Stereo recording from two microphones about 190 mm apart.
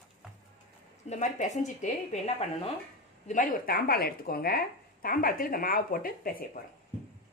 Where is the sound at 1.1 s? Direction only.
40° left (ahead or behind).